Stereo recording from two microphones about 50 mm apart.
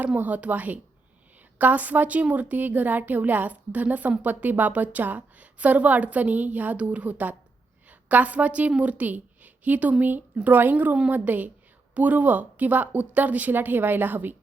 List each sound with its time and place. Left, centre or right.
0.0 s a woman's voice: right